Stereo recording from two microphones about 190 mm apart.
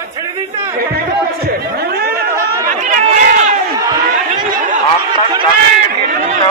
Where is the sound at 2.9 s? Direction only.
40° right (ahead or behind).